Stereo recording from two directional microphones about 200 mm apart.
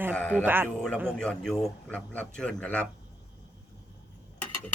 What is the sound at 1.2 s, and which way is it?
A man's voice, 5° left (ahead or behind).